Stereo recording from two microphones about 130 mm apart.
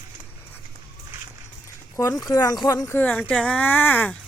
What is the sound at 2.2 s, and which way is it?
Speech, 25° left (ahead or behind).